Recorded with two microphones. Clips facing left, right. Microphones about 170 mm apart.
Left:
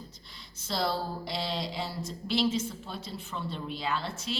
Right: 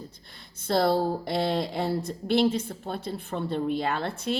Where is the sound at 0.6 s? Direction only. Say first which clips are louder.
Right 8 dB; 55° right (ahead or behind).